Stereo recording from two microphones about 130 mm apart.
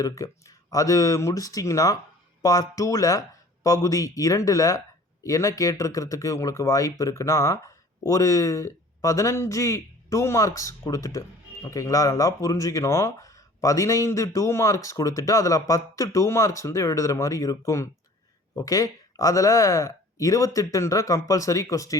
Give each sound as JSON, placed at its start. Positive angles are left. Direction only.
{"t": 0.0, "sound": "speech", "side_deg": 25}